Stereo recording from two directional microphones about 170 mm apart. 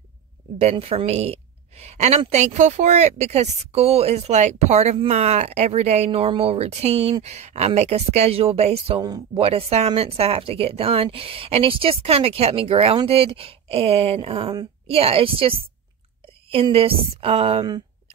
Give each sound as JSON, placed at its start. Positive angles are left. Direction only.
{"t": 0.6, "sound": "a woman's voice", "side_deg": -35}
{"t": 9.0, "sound": "a woman's voice", "side_deg": -25}